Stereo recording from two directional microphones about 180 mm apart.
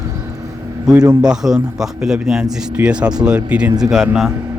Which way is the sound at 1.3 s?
5° right (ahead or behind).